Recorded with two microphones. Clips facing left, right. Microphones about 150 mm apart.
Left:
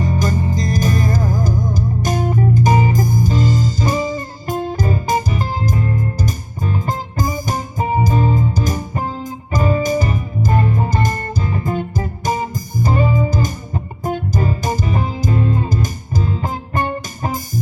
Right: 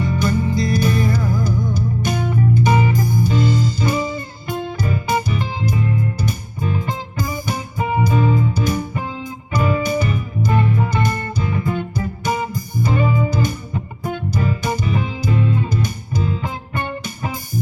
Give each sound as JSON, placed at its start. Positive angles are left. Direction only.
{"t": 0.0, "sound": "music", "side_deg": 40}